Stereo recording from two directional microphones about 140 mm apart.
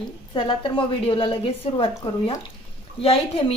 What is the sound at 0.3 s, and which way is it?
A woman's voice, 35° left (ahead or behind).